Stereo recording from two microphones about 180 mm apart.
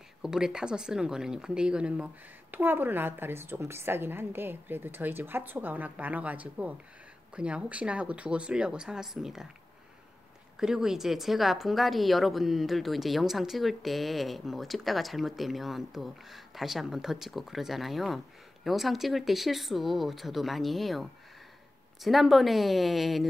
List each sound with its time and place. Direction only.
0.2 s a woman's voice: 5° right (ahead or behind)
10.6 s a woman's voice: 5° right (ahead or behind)